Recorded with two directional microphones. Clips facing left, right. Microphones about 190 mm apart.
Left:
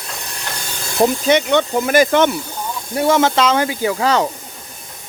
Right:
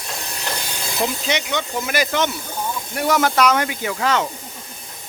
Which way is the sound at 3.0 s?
25° left (ahead or behind).